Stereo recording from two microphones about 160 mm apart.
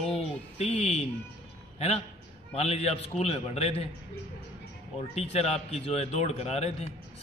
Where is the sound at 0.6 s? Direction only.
40° left (ahead or behind).